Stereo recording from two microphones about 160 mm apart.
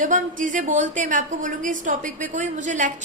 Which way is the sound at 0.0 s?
55° right (ahead or behind).